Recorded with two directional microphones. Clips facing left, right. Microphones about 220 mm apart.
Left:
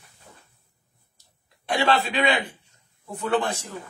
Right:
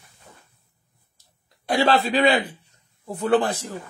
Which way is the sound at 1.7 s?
35° right (ahead or behind).